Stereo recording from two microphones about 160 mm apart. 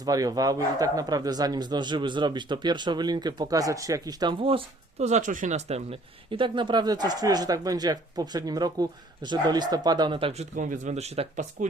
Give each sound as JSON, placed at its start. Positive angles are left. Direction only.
{"t": 0.0, "sound": "speech", "side_deg": -20}
{"t": 10.5, "sound": "speech", "side_deg": -50}